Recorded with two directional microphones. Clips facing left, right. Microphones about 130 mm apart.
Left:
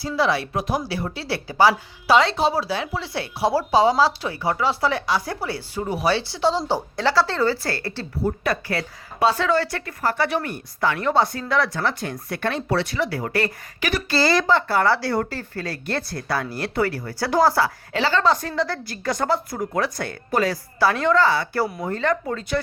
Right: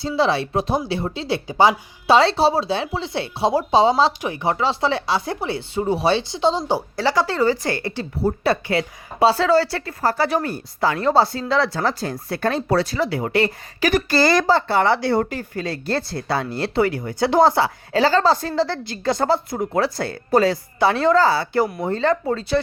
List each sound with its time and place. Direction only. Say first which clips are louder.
0.2 s a woman's voice: right 2 dB; 25° right (ahead or behind)
13.1 s a woman's voice: right 4 dB; 25° right (ahead or behind)
13.8 s speech: right 4 dB; 45° right (ahead or behind)
14.5 s a woman's voice: right 2 dB; 25° right (ahead or behind)
17.9 s a woman's voice: right 4 dB; 40° right (ahead or behind)
21.5 s a woman's voice: right 4 dB; 20° right (ahead or behind)